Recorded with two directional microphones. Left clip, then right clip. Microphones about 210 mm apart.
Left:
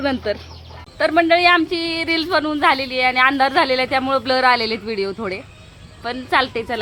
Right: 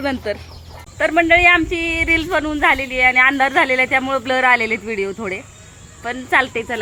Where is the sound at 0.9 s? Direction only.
5° left (ahead or behind).